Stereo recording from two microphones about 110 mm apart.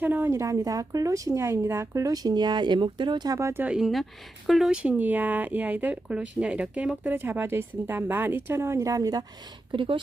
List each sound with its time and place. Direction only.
0.0 s speech: 15° right (ahead or behind)
3.8 s speech: centre (ahead or behind); by 9.2 s 35° right (ahead or behind)
9.7 s speech: 50° right (ahead or behind)